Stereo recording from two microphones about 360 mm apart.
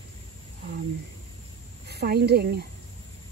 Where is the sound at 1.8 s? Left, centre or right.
Right.